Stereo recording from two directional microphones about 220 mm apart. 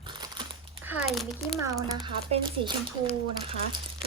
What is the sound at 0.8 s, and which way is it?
Speech, centre (ahead or behind).